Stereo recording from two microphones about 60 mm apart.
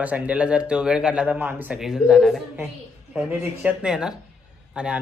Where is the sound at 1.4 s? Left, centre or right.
Right.